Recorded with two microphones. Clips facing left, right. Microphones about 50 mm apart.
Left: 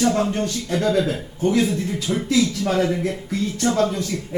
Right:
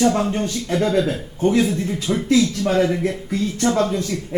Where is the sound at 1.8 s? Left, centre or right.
Right.